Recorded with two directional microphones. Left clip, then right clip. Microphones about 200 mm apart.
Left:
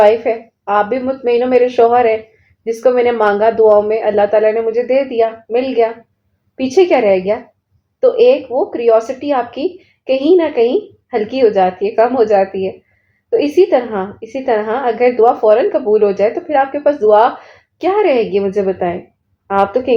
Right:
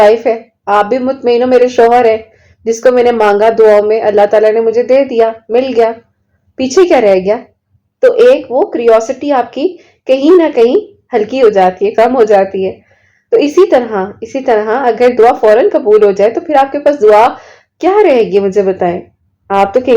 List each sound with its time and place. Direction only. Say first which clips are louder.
0.0 s a woman's voice: right 3 dB; 35° right (ahead or behind)